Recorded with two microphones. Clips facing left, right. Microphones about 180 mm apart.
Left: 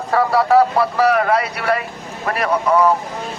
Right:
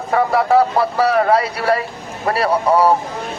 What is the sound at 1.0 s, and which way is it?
Speech, 30° right (ahead or behind).